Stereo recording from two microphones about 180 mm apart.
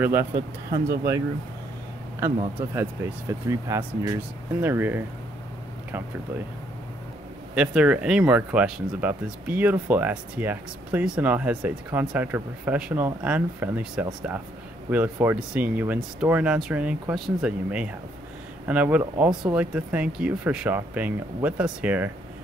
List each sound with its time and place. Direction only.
0.0 s speech: 15° right (ahead or behind)
0.3 s speech: 60° right (ahead or behind)
2.1 s speech: 15° right (ahead or behind)
7.5 s speech: 5° right (ahead or behind)